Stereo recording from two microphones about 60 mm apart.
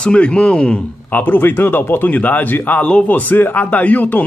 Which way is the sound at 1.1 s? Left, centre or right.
Left.